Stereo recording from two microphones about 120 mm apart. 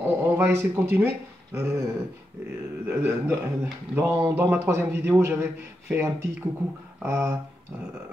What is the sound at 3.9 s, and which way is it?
Speech, 25° right (ahead or behind).